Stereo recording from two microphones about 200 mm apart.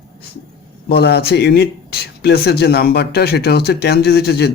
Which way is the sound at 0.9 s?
55° left (ahead or behind).